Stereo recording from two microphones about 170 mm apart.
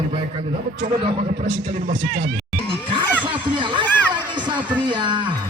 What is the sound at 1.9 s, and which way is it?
Speech, 90° right.